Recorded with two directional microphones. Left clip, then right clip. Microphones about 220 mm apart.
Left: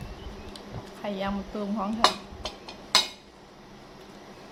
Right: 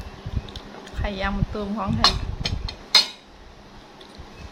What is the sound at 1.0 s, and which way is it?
Speech, 15° right (ahead or behind).